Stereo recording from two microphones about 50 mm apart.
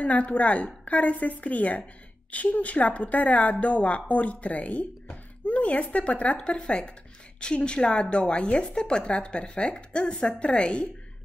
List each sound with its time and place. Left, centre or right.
0.0 s a woman's voice: left